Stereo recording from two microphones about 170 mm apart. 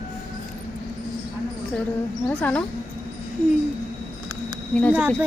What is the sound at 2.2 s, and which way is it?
Speech, 10° left (ahead or behind).